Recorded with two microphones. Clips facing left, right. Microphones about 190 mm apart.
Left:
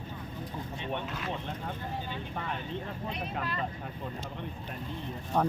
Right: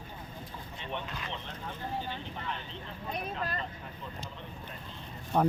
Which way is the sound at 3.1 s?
40° right (ahead or behind).